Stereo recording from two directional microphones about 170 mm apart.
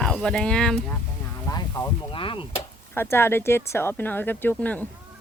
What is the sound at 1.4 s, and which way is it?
Speech, 20° left (ahead or behind).